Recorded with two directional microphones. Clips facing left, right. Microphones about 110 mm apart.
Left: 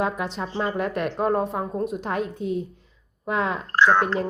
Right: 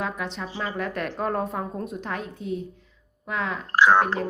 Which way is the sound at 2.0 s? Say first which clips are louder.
Left 4 dB; 25° left (ahead or behind).